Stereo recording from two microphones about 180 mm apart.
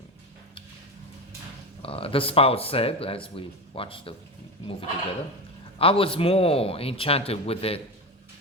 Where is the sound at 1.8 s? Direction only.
30° left (ahead or behind).